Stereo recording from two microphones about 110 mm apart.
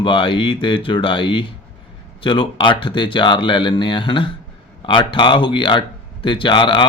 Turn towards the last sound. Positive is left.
turn(degrees=45)  # may be behind; listen again after turning